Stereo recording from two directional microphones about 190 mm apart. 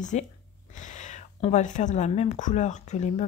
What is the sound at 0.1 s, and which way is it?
A woman's voice, 35° left (ahead or behind).